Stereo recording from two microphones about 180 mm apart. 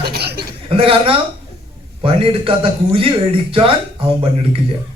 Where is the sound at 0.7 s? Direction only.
30° right (ahead or behind).